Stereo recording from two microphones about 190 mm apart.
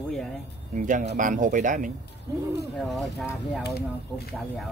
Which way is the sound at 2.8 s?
Centre (ahead or behind).